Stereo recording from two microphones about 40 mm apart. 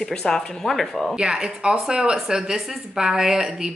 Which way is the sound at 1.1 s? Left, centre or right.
Right.